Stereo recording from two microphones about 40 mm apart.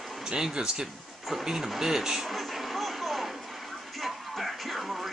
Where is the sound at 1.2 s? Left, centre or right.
Centre.